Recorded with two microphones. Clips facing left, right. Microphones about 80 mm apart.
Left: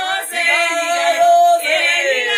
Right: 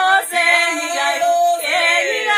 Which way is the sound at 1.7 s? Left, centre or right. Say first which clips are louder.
Even; right.